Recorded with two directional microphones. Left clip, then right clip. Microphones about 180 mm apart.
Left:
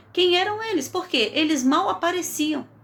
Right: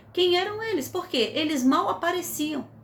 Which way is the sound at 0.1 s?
15° left (ahead or behind).